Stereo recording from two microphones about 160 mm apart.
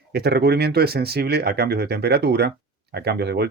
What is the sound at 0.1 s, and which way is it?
Speech, 85° right.